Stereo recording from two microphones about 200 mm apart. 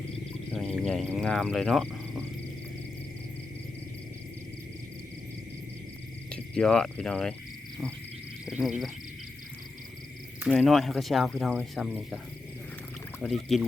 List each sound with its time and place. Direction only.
0.5 s speech: 5° left (ahead or behind)
6.3 s speech: 5° left (ahead or behind)
8.4 s speech: 5° right (ahead or behind)
10.5 s speech: centre (ahead or behind)
13.2 s speech: centre (ahead or behind)